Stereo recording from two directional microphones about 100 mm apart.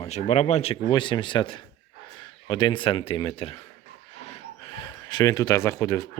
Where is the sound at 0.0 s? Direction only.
90° left.